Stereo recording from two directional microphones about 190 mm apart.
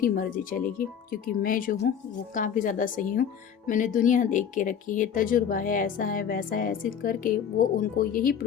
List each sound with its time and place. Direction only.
0.0 s speech: 45° left (ahead or behind)